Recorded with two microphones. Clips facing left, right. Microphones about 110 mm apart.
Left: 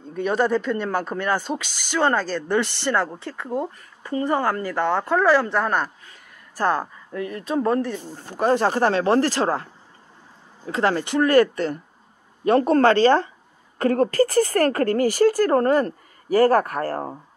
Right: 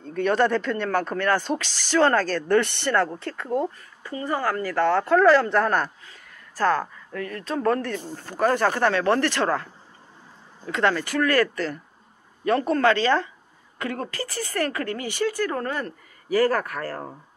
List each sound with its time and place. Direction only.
0.0 s a woman's voice: 10° left (ahead or behind)
4.1 s a woman's voice: 25° left (ahead or behind); by 5.9 s 5° left (ahead or behind)
6.5 s speech: 20° left (ahead or behind)
10.7 s speech: 30° left (ahead or behind)
12.4 s speech: 35° left (ahead or behind)